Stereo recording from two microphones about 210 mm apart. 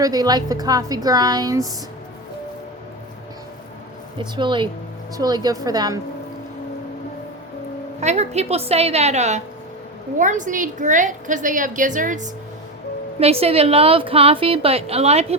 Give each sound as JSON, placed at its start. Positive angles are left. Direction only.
{"t": 0.0, "sound": "a woman's voice", "side_deg": -20}
{"t": 4.2, "sound": "a woman's voice", "side_deg": -20}
{"t": 8.0, "sound": "a woman's voice", "side_deg": -30}